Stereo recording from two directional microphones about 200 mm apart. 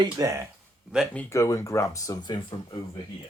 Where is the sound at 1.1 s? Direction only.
15° left (ahead or behind).